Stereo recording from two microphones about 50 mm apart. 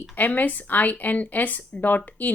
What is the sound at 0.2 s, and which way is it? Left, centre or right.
A woman's voice, left.